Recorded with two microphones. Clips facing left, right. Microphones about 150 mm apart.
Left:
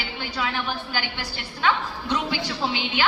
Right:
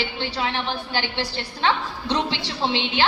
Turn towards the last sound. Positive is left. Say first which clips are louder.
# right 2 dB
turn(degrees=-30)  # may be behind; listen again after turning